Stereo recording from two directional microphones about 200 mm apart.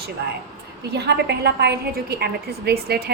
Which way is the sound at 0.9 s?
55° right (ahead or behind).